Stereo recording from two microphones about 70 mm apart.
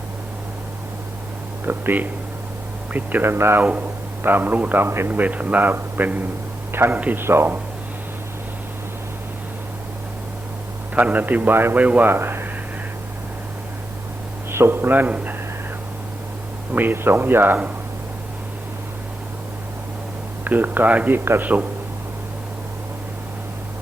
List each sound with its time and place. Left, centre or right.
1.6 s a man's voice: right
3.6 s a man's voice: right
10.9 s a man's voice: right
12.1 s speech: right
14.5 s a man's voice: right
16.7 s speech: right
20.4 s a man's voice: right